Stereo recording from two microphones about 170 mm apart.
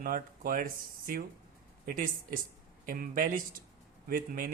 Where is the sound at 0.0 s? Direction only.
55° right (ahead or behind).